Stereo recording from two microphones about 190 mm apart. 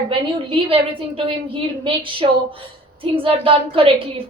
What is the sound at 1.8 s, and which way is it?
A woman's voice, 25° right (ahead or behind).